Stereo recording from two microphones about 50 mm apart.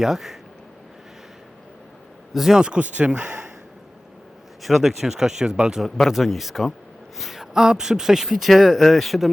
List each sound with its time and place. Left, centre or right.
0.0 s speech: centre
2.3 s speech: centre
2.8 s speech: right
4.6 s speech: centre
6.1 s speech: centre